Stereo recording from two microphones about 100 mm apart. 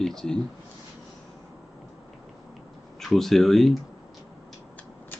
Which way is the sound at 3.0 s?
5° left (ahead or behind).